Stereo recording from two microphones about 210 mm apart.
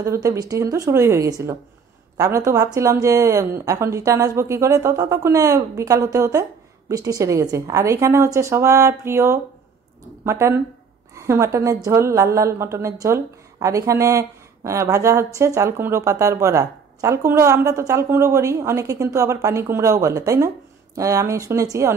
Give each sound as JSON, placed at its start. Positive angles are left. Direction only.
{"t": 0.0, "sound": "a woman's voice", "side_deg": -15}